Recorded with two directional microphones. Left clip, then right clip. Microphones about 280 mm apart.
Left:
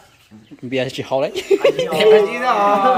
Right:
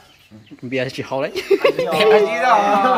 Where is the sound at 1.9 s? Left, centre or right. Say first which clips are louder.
Left 1 dB; centre.